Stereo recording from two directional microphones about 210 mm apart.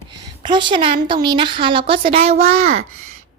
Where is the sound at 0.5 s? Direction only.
25° right (ahead or behind).